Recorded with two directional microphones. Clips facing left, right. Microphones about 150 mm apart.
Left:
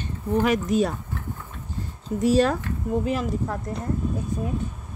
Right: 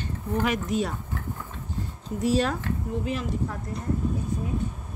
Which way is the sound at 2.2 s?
45° left (ahead or behind).